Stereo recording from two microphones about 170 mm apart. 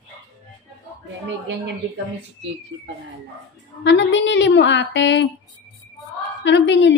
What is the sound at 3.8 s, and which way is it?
A woman's voice, 90° left.